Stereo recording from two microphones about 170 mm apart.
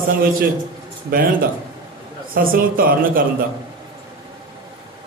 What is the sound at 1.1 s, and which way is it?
A man's voice, 60° right (ahead or behind).